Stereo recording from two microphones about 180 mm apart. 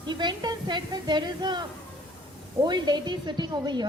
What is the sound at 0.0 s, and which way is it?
A woman's voice, 25° right (ahead or behind).